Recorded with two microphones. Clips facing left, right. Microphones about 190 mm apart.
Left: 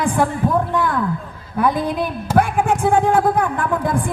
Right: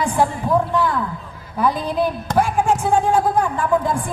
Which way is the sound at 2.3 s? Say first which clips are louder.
Left 2 dB; 55° left (ahead or behind).